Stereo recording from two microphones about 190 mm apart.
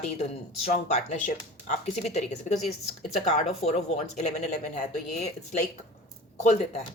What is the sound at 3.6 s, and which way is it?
Speech, 35° left (ahead or behind).